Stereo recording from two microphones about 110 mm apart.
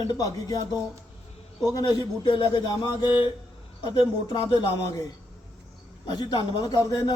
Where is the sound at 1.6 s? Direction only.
35° left (ahead or behind).